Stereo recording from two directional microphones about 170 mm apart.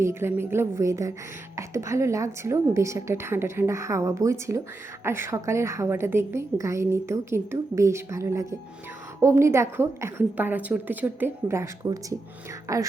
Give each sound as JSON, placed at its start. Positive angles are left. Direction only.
{"t": 0.0, "sound": "a woman's voice", "side_deg": -15}